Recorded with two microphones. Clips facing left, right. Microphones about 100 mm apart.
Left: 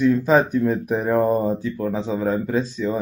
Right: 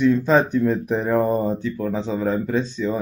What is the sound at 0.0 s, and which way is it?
Speech, 5° left (ahead or behind).